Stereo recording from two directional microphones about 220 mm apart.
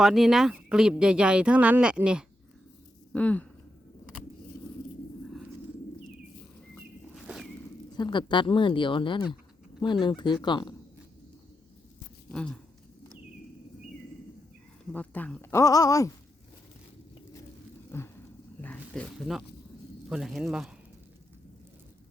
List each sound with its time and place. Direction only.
0.0 s speech: centre (ahead or behind)
3.1 s speech: 5° left (ahead or behind)
7.9 s speech: 20° left (ahead or behind)
12.3 s speech: 5° left (ahead or behind)
14.9 s speech: 5° left (ahead or behind)
17.9 s speech: 10° left (ahead or behind)